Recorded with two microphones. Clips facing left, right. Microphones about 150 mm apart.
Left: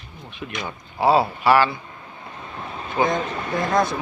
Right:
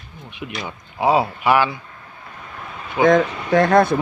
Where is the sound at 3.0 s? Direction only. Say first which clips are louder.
Right 8 dB; 85° right; by 4.0 s 60° right (ahead or behind).